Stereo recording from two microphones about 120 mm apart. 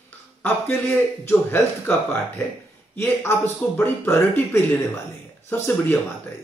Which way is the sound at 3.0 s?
20° left (ahead or behind).